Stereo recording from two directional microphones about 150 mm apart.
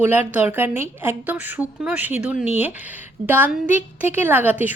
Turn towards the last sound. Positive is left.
turn(degrees=-10)  # may be behind; listen again after turning